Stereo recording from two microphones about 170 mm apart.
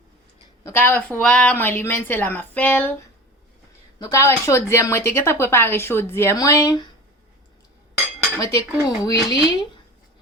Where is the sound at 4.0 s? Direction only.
15° left (ahead or behind).